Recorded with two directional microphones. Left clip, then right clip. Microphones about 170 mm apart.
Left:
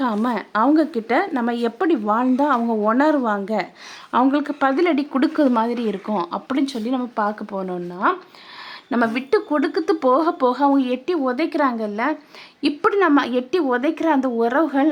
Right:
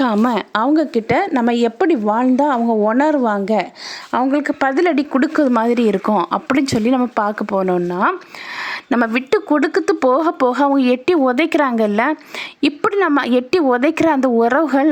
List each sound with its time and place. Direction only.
0.0 s speech: 30° right (ahead or behind)